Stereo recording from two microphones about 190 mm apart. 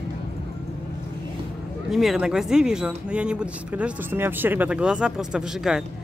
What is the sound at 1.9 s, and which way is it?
Speech, centre (ahead or behind).